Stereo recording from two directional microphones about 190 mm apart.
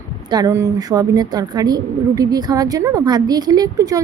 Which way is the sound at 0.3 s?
20° right (ahead or behind).